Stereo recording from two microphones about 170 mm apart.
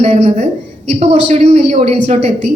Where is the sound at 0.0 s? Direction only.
40° right (ahead or behind).